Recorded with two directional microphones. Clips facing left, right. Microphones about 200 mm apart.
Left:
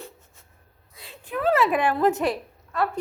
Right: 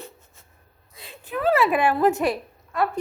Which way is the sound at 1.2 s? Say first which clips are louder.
Right 1 dB; 5° right (ahead or behind).